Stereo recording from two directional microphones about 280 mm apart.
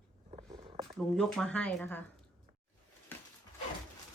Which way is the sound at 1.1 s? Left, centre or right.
Centre.